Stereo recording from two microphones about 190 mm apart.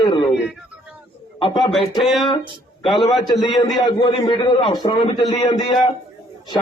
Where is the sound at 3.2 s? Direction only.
20° left (ahead or behind).